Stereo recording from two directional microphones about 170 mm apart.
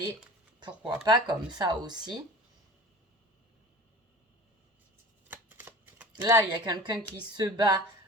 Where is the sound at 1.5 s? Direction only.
25° right (ahead or behind).